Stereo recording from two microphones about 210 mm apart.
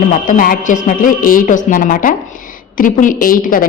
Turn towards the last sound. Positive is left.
turn(degrees=40)  # may be behind; listen again after turning